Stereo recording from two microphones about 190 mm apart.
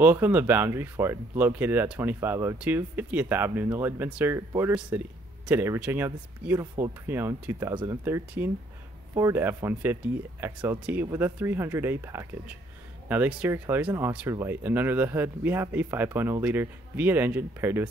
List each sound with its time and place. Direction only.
0.0 s speech: 10° right (ahead or behind)